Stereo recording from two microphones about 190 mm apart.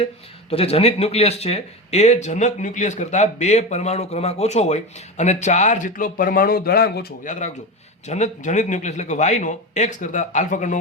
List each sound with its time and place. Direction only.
0.5 s speech: 30° left (ahead or behind); by 7.3 s 55° left (ahead or behind)
8.0 s speech: 35° left (ahead or behind)